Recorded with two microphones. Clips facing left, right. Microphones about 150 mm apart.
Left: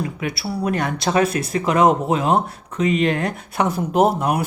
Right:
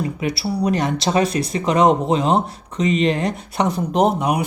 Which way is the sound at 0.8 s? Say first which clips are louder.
Even; centre (ahead or behind).